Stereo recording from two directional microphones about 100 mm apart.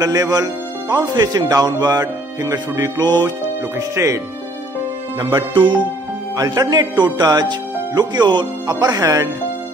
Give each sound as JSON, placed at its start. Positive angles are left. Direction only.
{"t": 0.0, "sound": "speech", "side_deg": -40}
{"t": 3.7, "sound": "speech", "side_deg": -30}
{"t": 5.2, "sound": "speech", "side_deg": -55}
{"t": 6.3, "sound": "speech", "side_deg": -40}